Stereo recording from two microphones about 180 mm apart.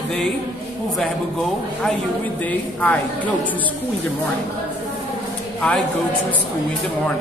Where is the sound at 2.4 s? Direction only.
10° left (ahead or behind).